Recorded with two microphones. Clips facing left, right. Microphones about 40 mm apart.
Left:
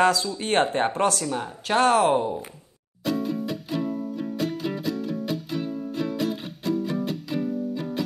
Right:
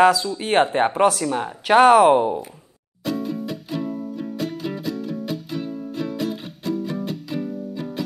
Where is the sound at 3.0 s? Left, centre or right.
Centre.